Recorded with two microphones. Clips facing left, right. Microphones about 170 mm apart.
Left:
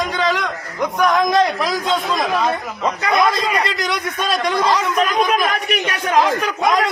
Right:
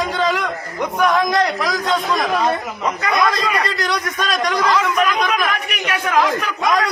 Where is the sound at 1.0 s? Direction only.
20° left (ahead or behind); by 5.5 s 35° left (ahead or behind).